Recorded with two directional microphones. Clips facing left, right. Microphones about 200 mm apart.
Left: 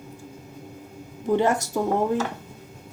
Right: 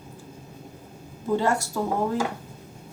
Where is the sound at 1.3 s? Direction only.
20° left (ahead or behind).